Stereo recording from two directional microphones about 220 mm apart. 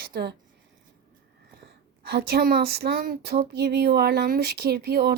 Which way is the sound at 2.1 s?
45° right (ahead or behind).